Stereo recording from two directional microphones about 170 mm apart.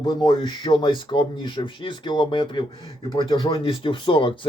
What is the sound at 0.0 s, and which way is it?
Speech, 25° left (ahead or behind).